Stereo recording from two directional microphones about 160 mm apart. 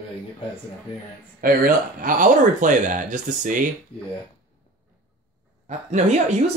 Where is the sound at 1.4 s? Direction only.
60° right (ahead or behind).